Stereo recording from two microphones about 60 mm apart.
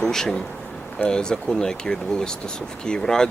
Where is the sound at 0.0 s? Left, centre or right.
Centre.